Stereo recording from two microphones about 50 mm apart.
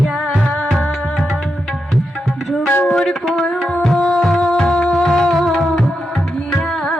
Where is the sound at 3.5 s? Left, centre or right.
Centre.